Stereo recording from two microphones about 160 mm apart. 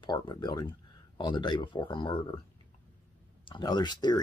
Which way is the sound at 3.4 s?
30° left (ahead or behind).